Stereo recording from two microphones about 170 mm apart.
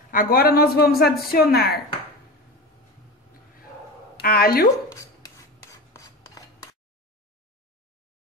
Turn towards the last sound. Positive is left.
turn(degrees=20)  # may be behind; listen again after turning